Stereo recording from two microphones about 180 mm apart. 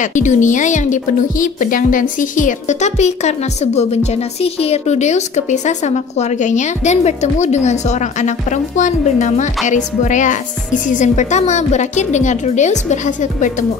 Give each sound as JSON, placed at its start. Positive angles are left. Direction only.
{"t": 0.0, "sound": "speech", "side_deg": 45}